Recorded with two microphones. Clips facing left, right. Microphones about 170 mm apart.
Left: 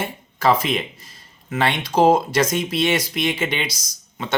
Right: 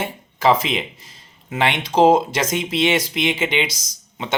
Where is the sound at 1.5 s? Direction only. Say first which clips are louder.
Right 1 dB; 15° right (ahead or behind).